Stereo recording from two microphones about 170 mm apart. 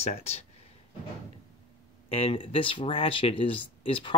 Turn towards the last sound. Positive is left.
turn(degrees=30)  # may be behind; listen again after turning